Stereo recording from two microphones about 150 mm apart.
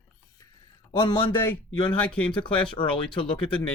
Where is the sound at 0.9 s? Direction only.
30° left (ahead or behind).